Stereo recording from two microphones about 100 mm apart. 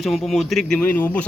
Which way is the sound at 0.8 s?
20° left (ahead or behind).